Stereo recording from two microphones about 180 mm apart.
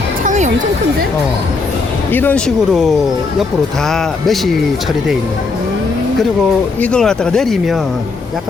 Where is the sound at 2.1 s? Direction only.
10° left (ahead or behind).